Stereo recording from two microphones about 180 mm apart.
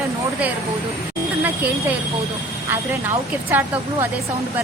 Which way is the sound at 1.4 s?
10° right (ahead or behind).